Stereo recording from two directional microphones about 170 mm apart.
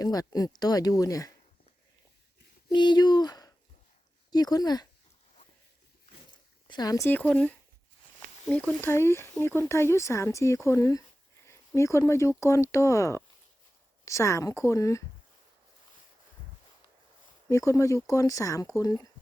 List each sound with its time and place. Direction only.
0.0 s speech: 20° left (ahead or behind)
2.6 s speech: 25° left (ahead or behind)
6.7 s speech: 25° left (ahead or behind)
17.5 s speech: 20° left (ahead or behind)